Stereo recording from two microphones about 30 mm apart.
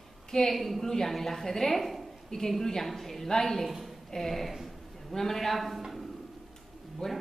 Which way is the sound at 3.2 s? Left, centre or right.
Centre.